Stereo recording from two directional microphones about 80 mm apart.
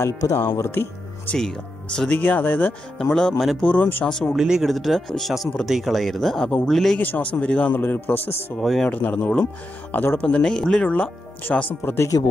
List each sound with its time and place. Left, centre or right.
0.0 s speech: left
2.0 s speech: centre
3.0 s speech: centre
4.4 s speech: centre
7.0 s speech: left
8.5 s speech: centre
8.9 s speech: centre
11.8 s speech: left